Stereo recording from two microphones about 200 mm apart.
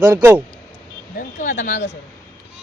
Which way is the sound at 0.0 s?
10° right (ahead or behind).